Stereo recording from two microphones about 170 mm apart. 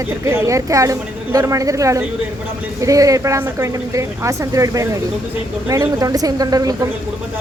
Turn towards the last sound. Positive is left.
turn(degrees=-20)  # may be behind; listen again after turning